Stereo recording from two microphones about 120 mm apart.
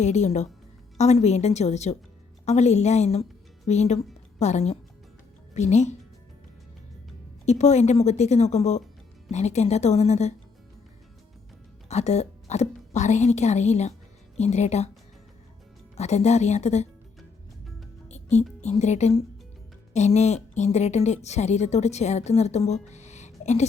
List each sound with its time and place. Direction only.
0.0 s a woman's voice: 70° left (ahead or behind)
7.4 s a woman's voice: 70° left (ahead or behind)
11.9 s a woman's voice: 65° left (ahead or behind)
16.0 s a woman's voice: 70° left (ahead or behind)
18.1 s music: 70° left (ahead or behind)
18.6 s a woman's voice: 70° left (ahead or behind)